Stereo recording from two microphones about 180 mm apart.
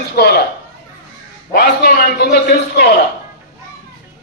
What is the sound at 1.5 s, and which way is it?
Speech, 55° left (ahead or behind).